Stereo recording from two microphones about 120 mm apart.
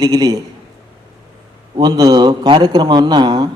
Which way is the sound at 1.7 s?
35° right (ahead or behind).